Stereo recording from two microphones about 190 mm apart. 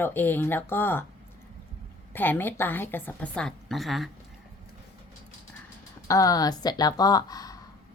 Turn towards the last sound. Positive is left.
turn(degrees=20)  # may be behind; listen again after turning